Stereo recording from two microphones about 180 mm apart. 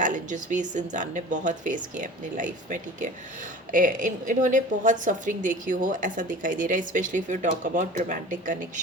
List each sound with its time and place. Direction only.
0.0 s a woman's voice: 45° right (ahead or behind)